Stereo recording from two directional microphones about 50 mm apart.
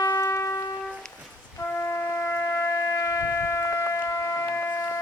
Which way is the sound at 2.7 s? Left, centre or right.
Left.